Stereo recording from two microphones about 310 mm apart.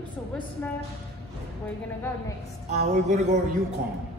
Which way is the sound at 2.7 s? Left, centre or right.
Right.